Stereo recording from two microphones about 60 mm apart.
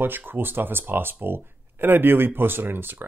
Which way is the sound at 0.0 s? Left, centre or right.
Right.